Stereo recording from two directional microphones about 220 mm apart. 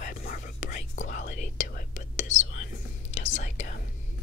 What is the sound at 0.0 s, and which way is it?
Whispering, 40° left (ahead or behind).